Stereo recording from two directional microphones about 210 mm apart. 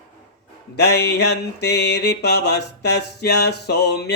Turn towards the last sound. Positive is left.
turn(degrees=50)  # may be behind; listen again after turning